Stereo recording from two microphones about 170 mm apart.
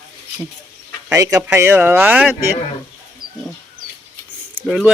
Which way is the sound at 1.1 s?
20° right (ahead or behind).